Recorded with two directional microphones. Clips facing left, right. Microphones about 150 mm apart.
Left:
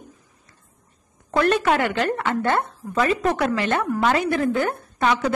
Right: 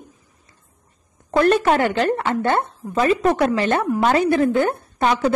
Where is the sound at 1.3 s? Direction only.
35° right (ahead or behind).